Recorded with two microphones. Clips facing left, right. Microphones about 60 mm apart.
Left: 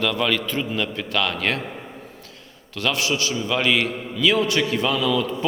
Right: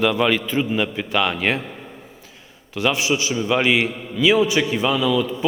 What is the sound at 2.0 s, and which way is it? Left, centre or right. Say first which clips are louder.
A man's voice: left 2 dB; centre.